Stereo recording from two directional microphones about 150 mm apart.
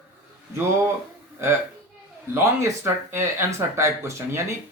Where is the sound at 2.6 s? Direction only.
15° right (ahead or behind).